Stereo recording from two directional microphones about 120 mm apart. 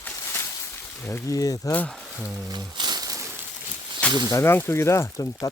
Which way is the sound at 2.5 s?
35° right (ahead or behind).